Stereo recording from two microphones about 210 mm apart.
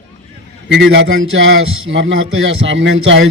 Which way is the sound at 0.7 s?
60° right (ahead or behind).